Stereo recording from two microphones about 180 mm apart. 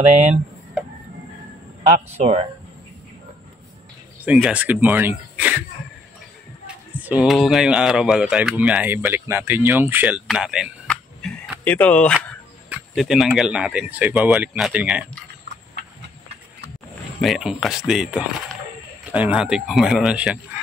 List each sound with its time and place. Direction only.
1.8 s speech: 35° right (ahead or behind)
4.2 s speech: 5° right (ahead or behind)
7.0 s speech: 10° right (ahead or behind); by 12.4 s 5° left (ahead or behind)
12.6 s speech: 5° right (ahead or behind)
17.2 s speech: centre (ahead or behind)